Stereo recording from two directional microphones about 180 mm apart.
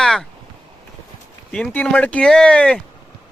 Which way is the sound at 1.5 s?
5° left (ahead or behind).